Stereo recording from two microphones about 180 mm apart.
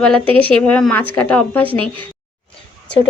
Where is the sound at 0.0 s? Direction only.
5° left (ahead or behind).